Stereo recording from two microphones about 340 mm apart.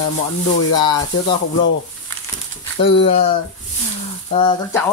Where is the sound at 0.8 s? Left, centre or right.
Centre.